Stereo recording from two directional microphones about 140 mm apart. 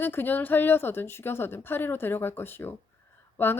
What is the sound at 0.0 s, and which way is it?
Speech, 15° left (ahead or behind).